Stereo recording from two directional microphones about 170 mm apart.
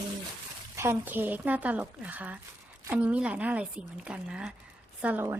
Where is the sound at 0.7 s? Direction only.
10° right (ahead or behind).